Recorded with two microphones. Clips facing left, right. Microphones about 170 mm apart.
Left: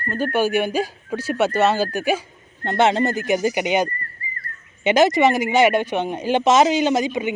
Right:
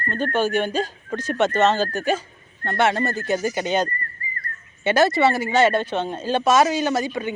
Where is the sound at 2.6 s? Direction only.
20° left (ahead or behind).